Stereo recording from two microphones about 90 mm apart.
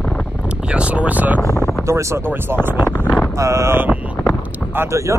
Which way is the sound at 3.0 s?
15° left (ahead or behind).